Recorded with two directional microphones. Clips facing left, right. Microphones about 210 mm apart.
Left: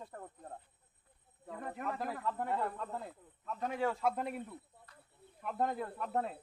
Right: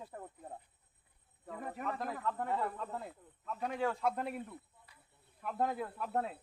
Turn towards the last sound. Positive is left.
turn(degrees=0)  # may be behind; listen again after turning